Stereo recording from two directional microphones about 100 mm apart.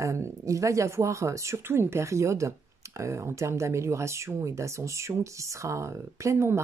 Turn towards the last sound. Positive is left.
turn(degrees=-30)  # may be behind; listen again after turning